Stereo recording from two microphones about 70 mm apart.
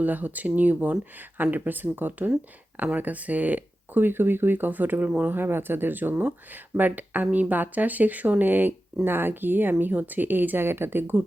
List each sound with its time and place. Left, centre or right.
0.0 s speech: right